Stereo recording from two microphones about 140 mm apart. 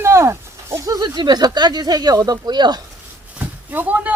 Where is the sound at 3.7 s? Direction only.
10° right (ahead or behind).